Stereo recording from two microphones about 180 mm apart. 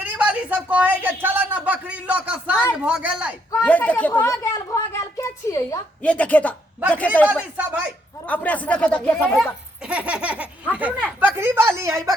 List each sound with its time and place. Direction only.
0.0 s speech: 5° right (ahead or behind)
3.6 s speech: 10° left (ahead or behind)
7.5 s speech: 10° right (ahead or behind)
8.3 s speech: 10° left (ahead or behind)
9.9 s a sound: 5° right (ahead or behind)
10.8 s speech: 5° right (ahead or behind)